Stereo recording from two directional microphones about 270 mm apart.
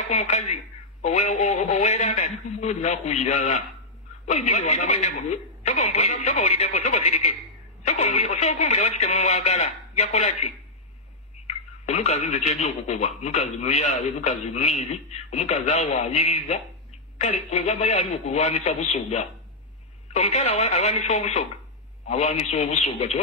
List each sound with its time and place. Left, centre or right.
0.0 s a man's voice: left